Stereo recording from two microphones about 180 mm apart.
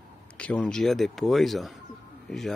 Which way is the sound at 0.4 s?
5° left (ahead or behind).